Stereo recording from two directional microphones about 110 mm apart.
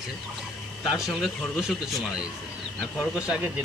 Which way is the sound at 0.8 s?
Centre (ahead or behind).